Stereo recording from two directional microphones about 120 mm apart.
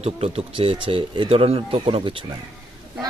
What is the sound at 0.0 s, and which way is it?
Speech, 55° right (ahead or behind).